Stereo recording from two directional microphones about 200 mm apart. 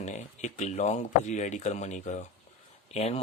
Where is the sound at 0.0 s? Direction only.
35° left (ahead or behind).